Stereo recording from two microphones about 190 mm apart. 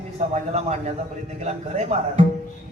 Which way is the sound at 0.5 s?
35° right (ahead or behind).